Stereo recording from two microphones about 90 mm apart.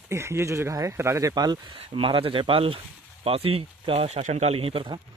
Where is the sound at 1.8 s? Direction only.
90° right.